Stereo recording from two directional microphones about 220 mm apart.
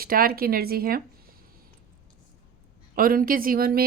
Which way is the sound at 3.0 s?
40° right (ahead or behind).